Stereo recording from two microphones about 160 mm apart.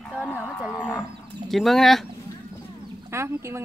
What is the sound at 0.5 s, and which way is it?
Livestock, 5° left (ahead or behind).